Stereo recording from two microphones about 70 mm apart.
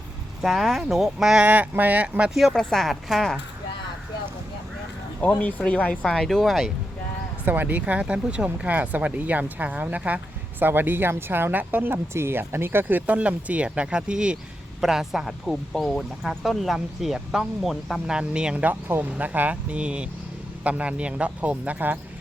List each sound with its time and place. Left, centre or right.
0.4 s speech: centre
1.5 s speech: right
2.5 s speech: centre
5.4 s speech: left; by 6.7 s centre
7.4 s speech: right; by 16.4 s centre
16.4 s speech: centre